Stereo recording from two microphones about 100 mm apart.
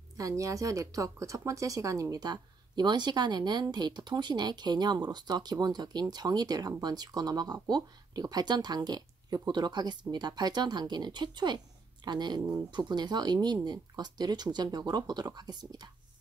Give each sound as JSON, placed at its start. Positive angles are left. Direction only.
{"t": 0.2, "sound": "speech", "side_deg": -35}